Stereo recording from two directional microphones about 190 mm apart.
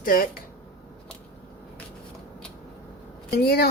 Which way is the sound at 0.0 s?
45° left (ahead or behind).